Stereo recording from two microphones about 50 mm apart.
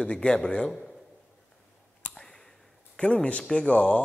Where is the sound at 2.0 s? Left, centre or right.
Left.